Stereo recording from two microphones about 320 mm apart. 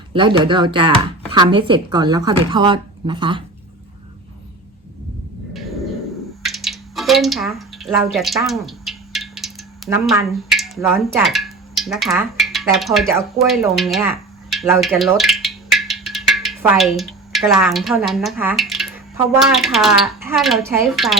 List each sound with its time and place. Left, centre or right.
0.1 s speech: centre
6.4 s speech: centre
14.5 s music: centre
17.0 s speech: centre